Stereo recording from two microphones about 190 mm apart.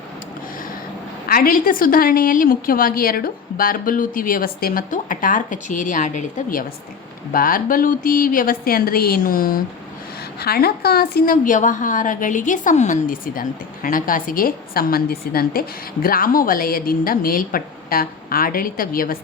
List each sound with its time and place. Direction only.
1.3 s a woman's voice: 50° left (ahead or behind)